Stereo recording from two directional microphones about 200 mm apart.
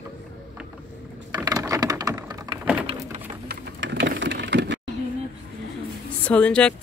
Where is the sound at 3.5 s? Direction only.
60° right (ahead or behind).